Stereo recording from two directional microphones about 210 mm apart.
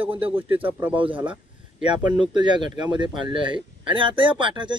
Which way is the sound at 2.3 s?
20° right (ahead or behind).